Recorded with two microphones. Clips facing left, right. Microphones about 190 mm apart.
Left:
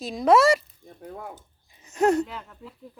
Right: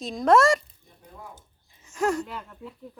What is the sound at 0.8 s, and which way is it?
Chopping, 65° left (ahead or behind).